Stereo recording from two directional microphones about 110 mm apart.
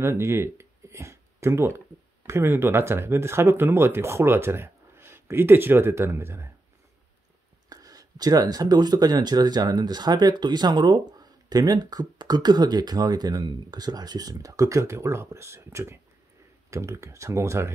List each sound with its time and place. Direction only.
0.0 s speech: 25° right (ahead or behind)
7.7 s speech: 35° right (ahead or behind)